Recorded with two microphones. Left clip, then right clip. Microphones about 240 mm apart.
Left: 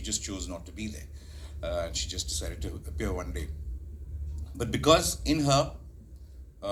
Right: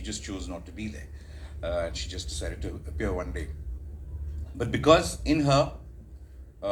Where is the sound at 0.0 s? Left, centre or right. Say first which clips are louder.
Left 1 dB; left.